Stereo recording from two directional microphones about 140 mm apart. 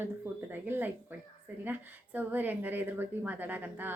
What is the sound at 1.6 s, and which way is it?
A woman's voice, 15° right (ahead or behind).